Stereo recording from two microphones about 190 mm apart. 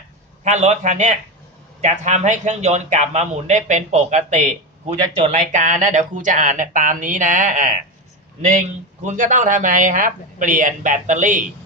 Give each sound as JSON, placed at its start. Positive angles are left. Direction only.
{"t": 0.4, "sound": "a man's voice", "side_deg": -35}